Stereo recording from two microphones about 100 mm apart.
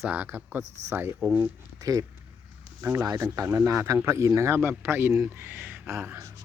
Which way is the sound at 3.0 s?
40° right (ahead or behind).